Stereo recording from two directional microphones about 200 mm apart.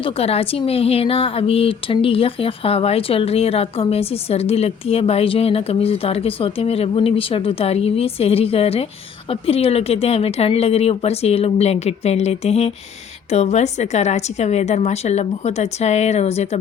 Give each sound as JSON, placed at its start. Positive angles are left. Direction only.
{"t": 0.0, "sound": "a woman's voice", "side_deg": 30}